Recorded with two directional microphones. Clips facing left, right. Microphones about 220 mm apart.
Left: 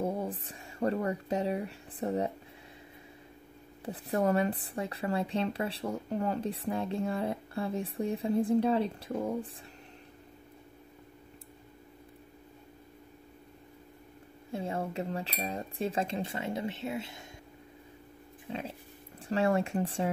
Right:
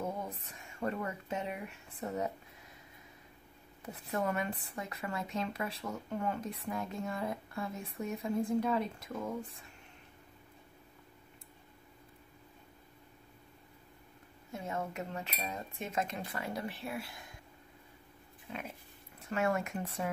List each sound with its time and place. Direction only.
0.0 s speech: 35° left (ahead or behind)
3.8 s a woman's voice: 30° left (ahead or behind)
14.5 s speech: 30° left (ahead or behind)
18.5 s a woman's voice: 30° left (ahead or behind)